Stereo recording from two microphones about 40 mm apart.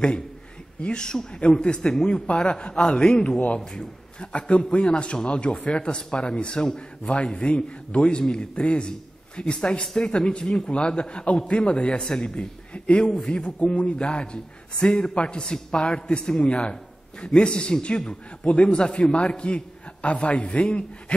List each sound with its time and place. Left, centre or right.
0.8 s a man's voice: centre
2.0 s speech: centre
2.4 s a man's voice: left
4.3 s a man's voice: left
13.0 s a man's voice: centre
13.6 s a man's voice: left; by 18.5 s centre
18.5 s a man's voice: left